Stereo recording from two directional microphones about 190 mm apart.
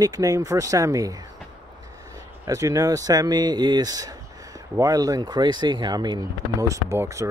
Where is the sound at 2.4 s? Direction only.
15° right (ahead or behind).